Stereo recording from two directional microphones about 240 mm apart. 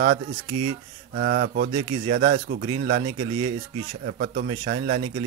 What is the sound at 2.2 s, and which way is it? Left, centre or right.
Speech, right.